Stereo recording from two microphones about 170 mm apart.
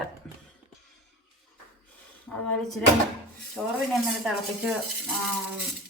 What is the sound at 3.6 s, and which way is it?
Speech, centre (ahead or behind).